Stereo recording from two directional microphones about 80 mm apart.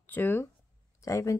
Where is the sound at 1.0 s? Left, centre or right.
Left.